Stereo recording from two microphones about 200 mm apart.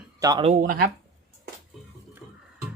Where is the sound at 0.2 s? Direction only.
20° right (ahead or behind).